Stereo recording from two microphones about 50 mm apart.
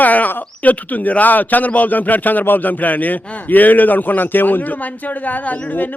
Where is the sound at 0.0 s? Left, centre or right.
Left.